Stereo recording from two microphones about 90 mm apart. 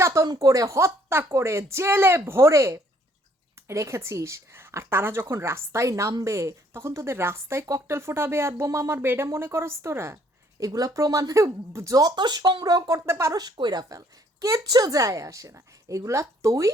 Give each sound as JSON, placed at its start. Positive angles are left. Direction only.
{"t": 0.0, "sound": "a woman's voice", "side_deg": -30}
{"t": 10.6, "sound": "a woman's voice", "side_deg": -40}
{"t": 12.1, "sound": "speech", "side_deg": -55}
{"t": 13.3, "sound": "a woman's voice", "side_deg": -50}